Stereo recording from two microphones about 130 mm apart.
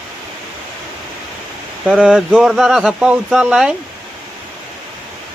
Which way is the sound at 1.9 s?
5° right (ahead or behind).